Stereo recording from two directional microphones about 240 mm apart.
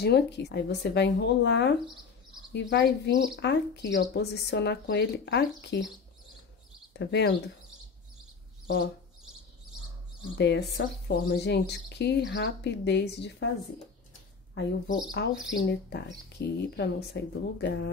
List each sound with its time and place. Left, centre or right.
0.0 s speech: left
6.9 s speech: left
10.3 s speech: left
14.5 s speech: left